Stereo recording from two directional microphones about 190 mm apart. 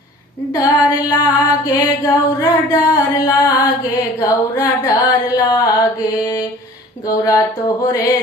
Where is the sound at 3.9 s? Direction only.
15° left (ahead or behind).